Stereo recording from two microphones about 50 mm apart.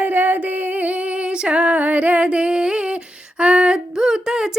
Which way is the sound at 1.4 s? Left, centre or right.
Right.